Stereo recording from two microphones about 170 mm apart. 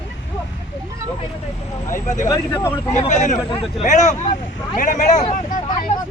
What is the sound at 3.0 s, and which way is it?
A man's voice, 45° left (ahead or behind).